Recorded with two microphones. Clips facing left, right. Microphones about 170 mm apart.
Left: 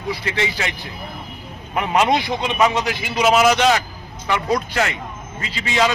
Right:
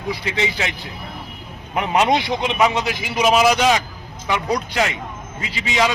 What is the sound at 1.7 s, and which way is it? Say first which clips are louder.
A man's voice: even; 20° right (ahead or behind).